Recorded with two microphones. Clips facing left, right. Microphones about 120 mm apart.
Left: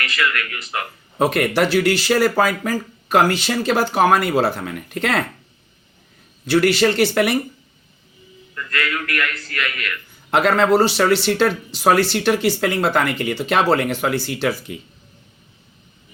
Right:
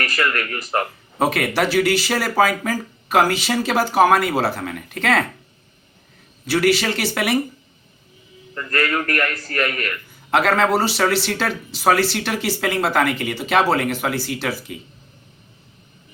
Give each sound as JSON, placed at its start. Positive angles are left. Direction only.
{"t": 0.0, "sound": "a man's voice", "side_deg": -45}
{"t": 1.2, "sound": "speech", "side_deg": 0}
{"t": 6.4, "sound": "speech", "side_deg": -5}
{"t": 8.5, "sound": "a man's voice", "side_deg": -40}
{"t": 10.3, "sound": "speech", "side_deg": 0}